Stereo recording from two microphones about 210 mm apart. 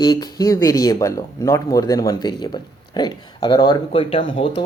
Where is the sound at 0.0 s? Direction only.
20° left (ahead or behind).